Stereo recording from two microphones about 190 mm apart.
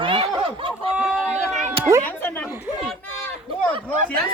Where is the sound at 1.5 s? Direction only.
35° right (ahead or behind).